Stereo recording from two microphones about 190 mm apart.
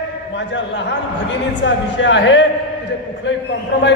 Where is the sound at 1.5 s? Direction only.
70° left (ahead or behind).